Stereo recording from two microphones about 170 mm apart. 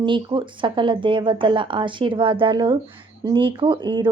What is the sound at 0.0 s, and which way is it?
A woman's voice, 30° right (ahead or behind).